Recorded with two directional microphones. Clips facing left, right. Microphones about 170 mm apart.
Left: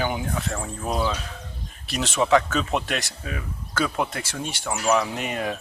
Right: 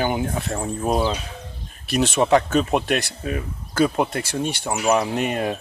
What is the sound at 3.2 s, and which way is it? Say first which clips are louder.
Speech: right 6 dB; 40° right (ahead or behind).